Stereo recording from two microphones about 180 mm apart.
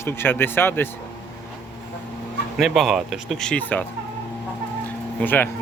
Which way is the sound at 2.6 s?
Centre (ahead or behind).